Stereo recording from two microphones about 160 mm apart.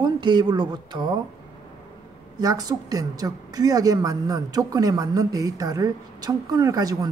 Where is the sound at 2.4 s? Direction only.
25° right (ahead or behind).